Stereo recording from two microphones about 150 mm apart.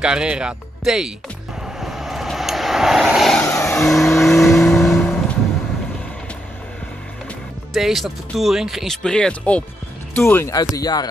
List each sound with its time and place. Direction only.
0.0 s speech: 5° right (ahead or behind)
1.8 s vehicle: centre (ahead or behind)
4.2 s speech: centre (ahead or behind)
4.6 s vehicle: 5° left (ahead or behind)
7.7 s speech: centre (ahead or behind); by 11.1 s 25° left (ahead or behind)